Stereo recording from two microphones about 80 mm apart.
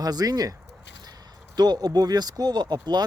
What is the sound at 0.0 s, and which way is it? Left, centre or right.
Speech, right.